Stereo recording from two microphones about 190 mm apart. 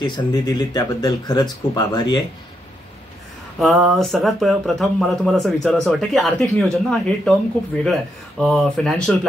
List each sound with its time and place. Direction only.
0.0 s speech: 20° left (ahead or behind)
3.5 s speech: centre (ahead or behind)